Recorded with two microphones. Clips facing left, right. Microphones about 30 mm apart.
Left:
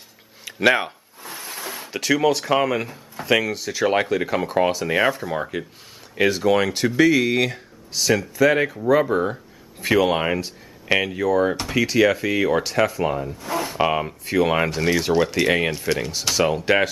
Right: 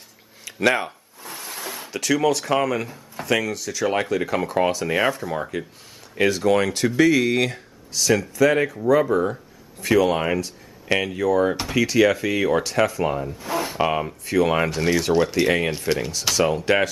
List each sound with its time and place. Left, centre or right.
0.5 s a sound: centre
1.9 s speech: centre
13.7 s speech: centre